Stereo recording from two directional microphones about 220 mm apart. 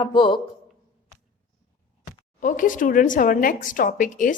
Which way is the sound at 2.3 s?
35° left (ahead or behind).